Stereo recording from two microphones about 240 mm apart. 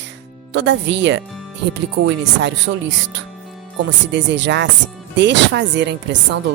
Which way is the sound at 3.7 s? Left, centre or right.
Right.